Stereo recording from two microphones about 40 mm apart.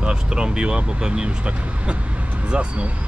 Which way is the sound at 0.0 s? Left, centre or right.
Right.